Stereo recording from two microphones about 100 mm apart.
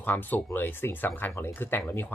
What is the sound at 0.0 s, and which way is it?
Speech, 20° left (ahead or behind).